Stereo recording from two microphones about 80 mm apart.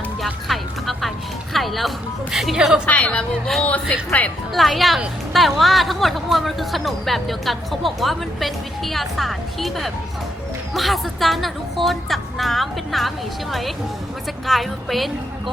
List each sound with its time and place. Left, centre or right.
0.4 s music: centre
1.5 s speech: centre
2.8 s a woman's voice: centre
4.5 s speech: centre